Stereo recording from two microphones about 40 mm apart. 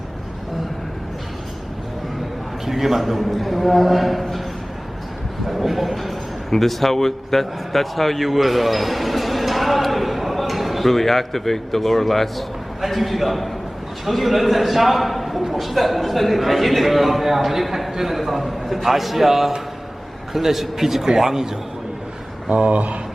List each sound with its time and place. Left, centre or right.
2.6 s a man's voice: centre
5.5 s a man's voice: centre
22.4 s speech: right